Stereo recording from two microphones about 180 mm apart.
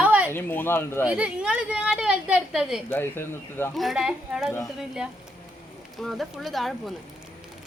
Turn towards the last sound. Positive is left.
turn(degrees=0)  # may be behind; listen again after turning